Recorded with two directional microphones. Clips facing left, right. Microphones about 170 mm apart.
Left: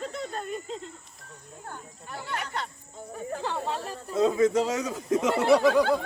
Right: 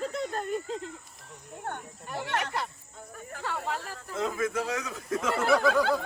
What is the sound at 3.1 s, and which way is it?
Speech, 30° left (ahead or behind).